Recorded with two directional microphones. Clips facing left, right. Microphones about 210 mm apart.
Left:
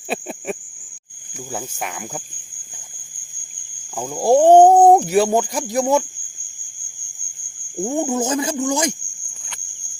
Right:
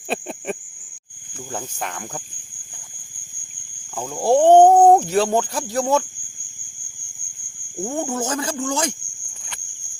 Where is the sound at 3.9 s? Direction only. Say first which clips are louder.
Left 2 dB; 10° left (ahead or behind).